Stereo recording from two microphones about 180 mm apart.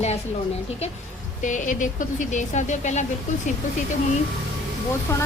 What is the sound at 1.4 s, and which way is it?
A woman's voice, 45° left (ahead or behind).